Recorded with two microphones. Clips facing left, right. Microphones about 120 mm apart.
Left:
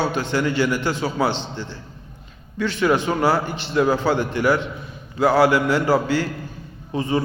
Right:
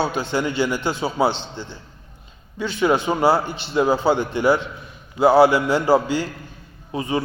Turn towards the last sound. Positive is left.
turn(degrees=-15)  # may be behind; listen again after turning